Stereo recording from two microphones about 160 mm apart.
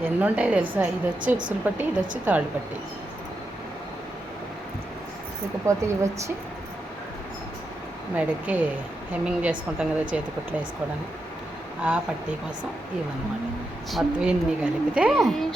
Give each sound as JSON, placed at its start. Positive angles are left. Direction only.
{"t": 0.0, "sound": "a woman's voice", "side_deg": -10}
{"t": 5.6, "sound": "speech", "side_deg": -20}
{"t": 8.1, "sound": "a woman's voice", "side_deg": -10}
{"t": 13.9, "sound": "a woman's voice", "side_deg": -5}